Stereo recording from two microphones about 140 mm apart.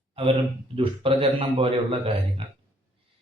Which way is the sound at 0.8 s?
40° right (ahead or behind).